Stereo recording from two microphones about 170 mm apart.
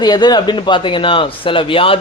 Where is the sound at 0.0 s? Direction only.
25° left (ahead or behind).